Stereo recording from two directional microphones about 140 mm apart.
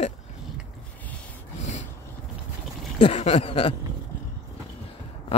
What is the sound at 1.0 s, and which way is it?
Rub, 10° left (ahead or behind).